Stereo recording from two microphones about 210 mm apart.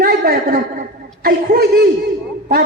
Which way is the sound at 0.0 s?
45° right (ahead or behind).